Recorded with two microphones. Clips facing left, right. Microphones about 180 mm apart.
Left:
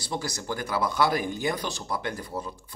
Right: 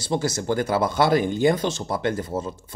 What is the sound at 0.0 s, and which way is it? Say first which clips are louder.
Speech: right 8 dB; 25° right (ahead or behind).